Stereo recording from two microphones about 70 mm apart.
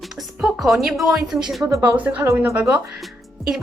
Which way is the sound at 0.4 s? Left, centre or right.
Centre.